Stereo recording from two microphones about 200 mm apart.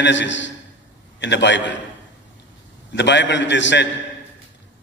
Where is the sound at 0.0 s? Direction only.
65° left (ahead or behind).